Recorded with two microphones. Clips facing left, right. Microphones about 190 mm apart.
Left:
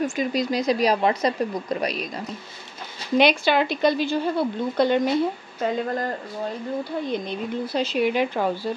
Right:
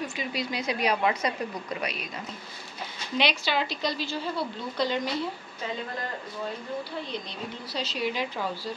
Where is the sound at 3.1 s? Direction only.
50° left (ahead or behind).